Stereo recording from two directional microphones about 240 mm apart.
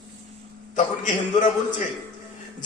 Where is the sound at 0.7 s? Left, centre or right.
Left.